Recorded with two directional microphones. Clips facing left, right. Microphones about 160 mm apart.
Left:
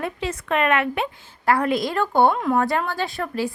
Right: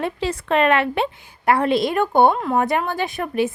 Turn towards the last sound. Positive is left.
turn(degrees=-20)  # may be behind; listen again after turning